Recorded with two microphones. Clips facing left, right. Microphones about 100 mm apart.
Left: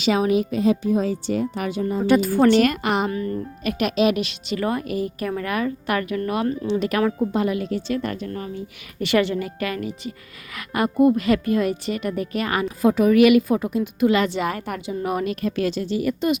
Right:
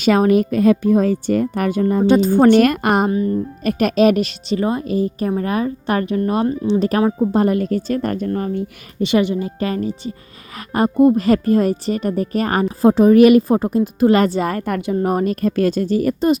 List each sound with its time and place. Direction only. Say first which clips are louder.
0.0 s a woman's voice: right 5 dB; 50° right (ahead or behind)
2.0 s speech: right 3 dB; 25° right (ahead or behind)
2.5 s a woman's voice: right 5 dB; 50° right (ahead or behind)
3.1 s speech: right 7 dB; 25° right (ahead or behind)
3.6 s speech: right 5 dB; 40° right (ahead or behind)
7.3 s a woman's voice: right 6 dB; 45° right (ahead or behind)
9.0 s speech: right 3 dB; 20° right (ahead or behind); by 16.4 s 40° right (ahead or behind)